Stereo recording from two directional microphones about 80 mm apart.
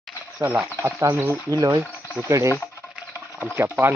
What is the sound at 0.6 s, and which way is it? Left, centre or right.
Speech, right.